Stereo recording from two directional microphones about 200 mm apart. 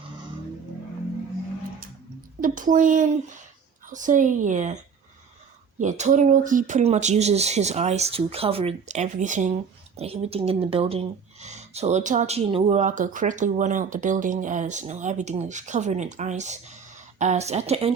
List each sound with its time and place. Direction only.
2.4 s speech: 40° right (ahead or behind)
5.8 s speech: 35° right (ahead or behind)